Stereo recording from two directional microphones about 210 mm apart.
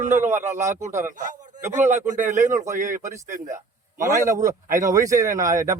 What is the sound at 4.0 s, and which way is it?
A man's voice, 15° right (ahead or behind).